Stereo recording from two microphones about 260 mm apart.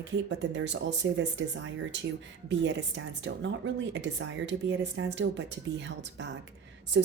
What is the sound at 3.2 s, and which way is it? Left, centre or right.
Speech, right.